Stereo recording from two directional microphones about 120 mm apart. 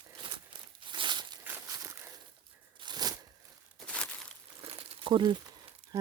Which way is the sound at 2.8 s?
35° right (ahead or behind).